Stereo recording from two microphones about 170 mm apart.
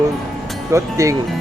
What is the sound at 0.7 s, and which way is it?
Speech, 20° right (ahead or behind).